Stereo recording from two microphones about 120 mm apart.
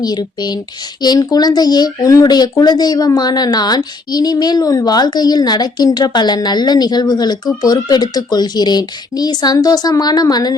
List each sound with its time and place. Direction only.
0.0 s speech: 35° left (ahead or behind)